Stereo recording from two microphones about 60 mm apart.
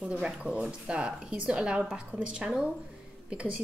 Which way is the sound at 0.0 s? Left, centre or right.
Centre.